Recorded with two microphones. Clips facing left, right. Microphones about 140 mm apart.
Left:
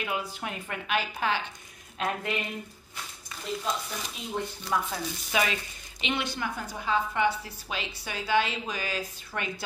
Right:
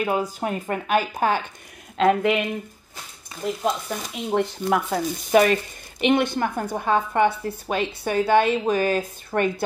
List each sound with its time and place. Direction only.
0.0 s speech: 40° right (ahead or behind)
2.0 s speech: 85° right
3.6 s speech: 70° right (ahead or behind); by 9.5 s 50° right (ahead or behind)